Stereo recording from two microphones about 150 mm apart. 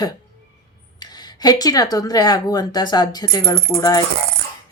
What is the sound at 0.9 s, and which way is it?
Speech, 25° left (ahead or behind).